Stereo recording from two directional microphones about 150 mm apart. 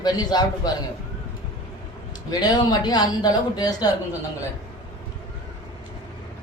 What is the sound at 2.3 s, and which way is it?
Speech, 25° left (ahead or behind).